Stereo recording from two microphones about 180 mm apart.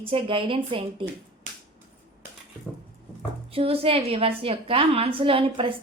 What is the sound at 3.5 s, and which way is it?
A woman's voice, 30° right (ahead or behind).